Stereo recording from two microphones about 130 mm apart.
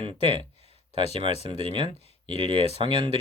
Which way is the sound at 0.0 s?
45° right (ahead or behind).